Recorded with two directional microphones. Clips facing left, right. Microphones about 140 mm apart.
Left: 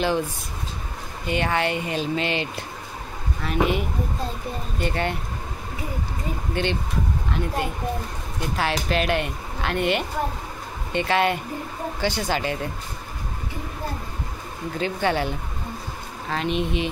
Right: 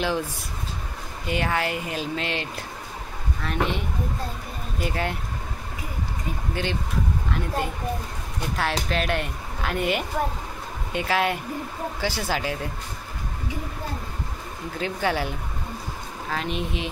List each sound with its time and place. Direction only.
1.2 s speech: centre (ahead or behind)
6.5 s speech: centre (ahead or behind)
14.8 s speech: 5° right (ahead or behind)